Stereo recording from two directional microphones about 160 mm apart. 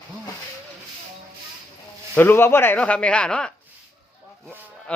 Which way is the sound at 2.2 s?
15° left (ahead or behind).